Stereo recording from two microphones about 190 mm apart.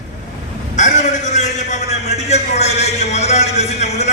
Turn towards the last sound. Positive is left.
turn(degrees=35)  # may be behind; listen again after turning